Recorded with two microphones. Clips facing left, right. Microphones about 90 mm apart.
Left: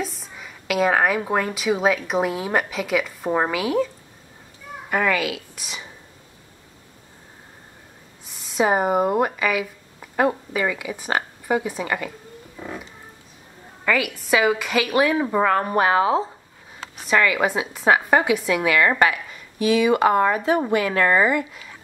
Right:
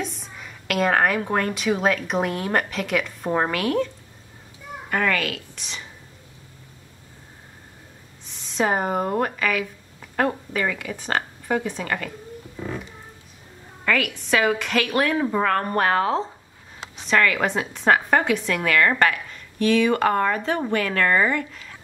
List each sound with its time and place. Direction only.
0.0 s a woman's voice: centre (ahead or behind)
8.3 s a woman's voice: 5° left (ahead or behind)
12.5 s a sound: 5° left (ahead or behind)
13.8 s a woman's voice: 5° left (ahead or behind)